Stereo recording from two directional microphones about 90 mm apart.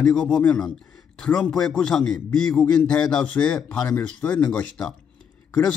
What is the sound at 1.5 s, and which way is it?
Speech, 5° left (ahead or behind).